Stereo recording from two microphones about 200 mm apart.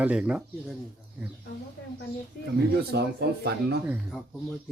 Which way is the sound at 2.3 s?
50° left (ahead or behind).